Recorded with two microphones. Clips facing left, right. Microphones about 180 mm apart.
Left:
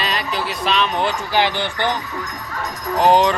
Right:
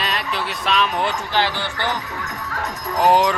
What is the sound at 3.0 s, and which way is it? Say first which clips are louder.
Speech: left 2 dB; 5° right (ahead or behind).